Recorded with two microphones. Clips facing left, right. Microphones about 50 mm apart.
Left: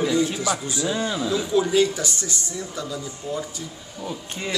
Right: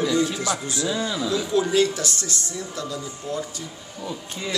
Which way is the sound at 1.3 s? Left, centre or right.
Centre.